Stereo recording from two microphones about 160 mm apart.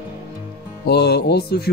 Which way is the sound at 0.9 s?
90° left.